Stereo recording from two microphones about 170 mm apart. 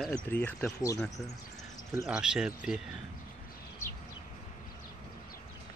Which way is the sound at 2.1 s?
5° right (ahead or behind).